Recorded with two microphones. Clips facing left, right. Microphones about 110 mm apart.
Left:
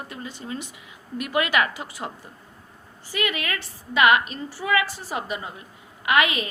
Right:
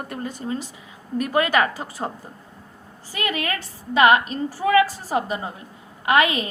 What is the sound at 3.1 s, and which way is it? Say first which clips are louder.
A woman's voice: right 1 dB; 35° right (ahead or behind).